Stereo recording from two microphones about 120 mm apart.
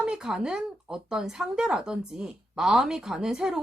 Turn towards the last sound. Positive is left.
turn(degrees=-5)  # may be behind; listen again after turning